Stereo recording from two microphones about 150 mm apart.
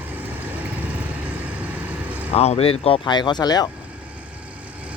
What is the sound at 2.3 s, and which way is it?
Speech, 45° left (ahead or behind).